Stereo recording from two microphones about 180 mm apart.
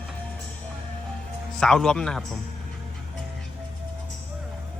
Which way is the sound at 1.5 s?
5° left (ahead or behind).